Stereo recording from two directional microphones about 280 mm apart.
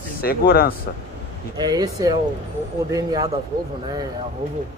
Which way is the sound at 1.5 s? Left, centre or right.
Centre.